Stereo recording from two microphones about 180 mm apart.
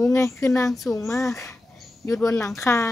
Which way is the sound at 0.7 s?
Centre (ahead or behind).